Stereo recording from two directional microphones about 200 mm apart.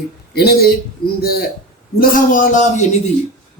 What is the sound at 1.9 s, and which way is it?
Speech, 45° left (ahead or behind).